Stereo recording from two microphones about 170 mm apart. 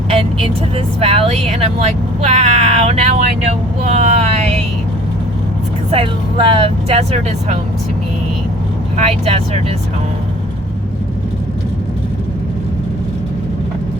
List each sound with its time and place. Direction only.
0.1 s vehicle: 35° right (ahead or behind)
0.9 s speech: 35° right (ahead or behind)
5.9 s speech: 35° right (ahead or behind)
9.0 s speech: 35° right (ahead or behind)